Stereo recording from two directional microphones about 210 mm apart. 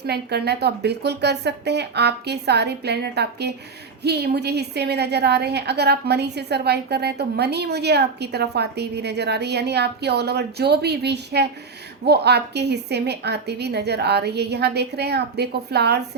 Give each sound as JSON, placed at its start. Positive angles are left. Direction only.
{"t": 0.0, "sound": "a woman's voice", "side_deg": -50}